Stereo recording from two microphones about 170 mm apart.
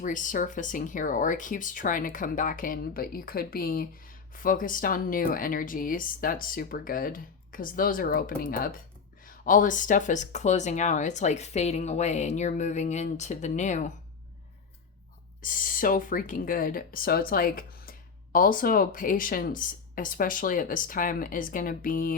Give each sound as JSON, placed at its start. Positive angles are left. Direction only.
{"t": 0.0, "sound": "speech", "side_deg": 50}
{"t": 15.4, "sound": "speech", "side_deg": 55}